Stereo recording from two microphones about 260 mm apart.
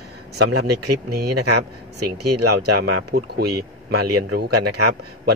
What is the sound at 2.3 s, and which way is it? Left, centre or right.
Speech, right.